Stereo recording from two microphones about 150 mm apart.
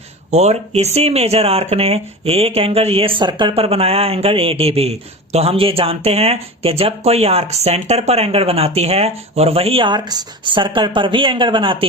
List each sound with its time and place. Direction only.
0.3 s speech: 45° right (ahead or behind)